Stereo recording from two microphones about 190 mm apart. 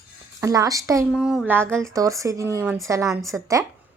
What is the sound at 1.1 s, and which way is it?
Speech, 5° right (ahead or behind).